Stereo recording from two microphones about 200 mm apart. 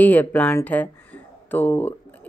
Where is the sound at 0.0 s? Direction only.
10° left (ahead or behind).